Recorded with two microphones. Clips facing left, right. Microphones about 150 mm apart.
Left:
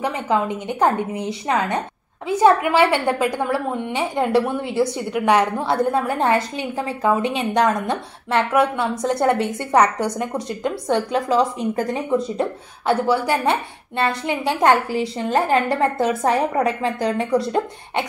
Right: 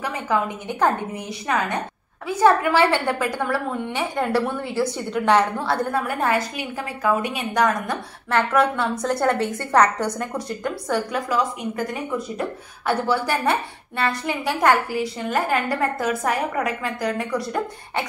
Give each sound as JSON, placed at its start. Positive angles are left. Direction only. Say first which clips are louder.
{"t": 0.0, "sound": "a woman's voice", "louder": "left 3 dB", "side_deg": 20}